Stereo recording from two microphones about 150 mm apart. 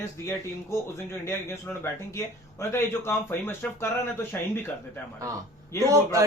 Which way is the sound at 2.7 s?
15° left (ahead or behind).